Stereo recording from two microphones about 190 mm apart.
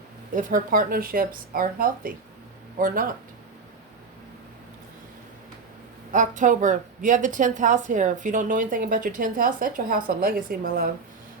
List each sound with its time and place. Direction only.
0.3 s a woman's voice: 45° right (ahead or behind)
6.1 s a woman's voice: 40° right (ahead or behind)